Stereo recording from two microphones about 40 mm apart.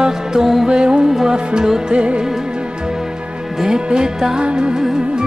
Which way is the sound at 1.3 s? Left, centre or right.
Right.